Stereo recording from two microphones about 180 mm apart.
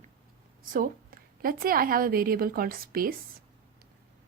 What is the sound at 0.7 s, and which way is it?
A woman's voice, 55° right (ahead or behind).